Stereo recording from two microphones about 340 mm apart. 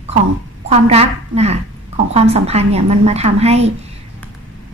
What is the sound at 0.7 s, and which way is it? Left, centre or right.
A woman's voice, centre.